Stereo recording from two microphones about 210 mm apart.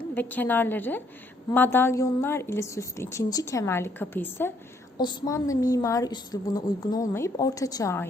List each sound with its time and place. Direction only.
0.1 s a woman's voice: 10° left (ahead or behind)